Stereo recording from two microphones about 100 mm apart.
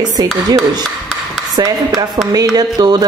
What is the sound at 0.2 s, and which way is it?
A woman's voice, 40° right (ahead or behind).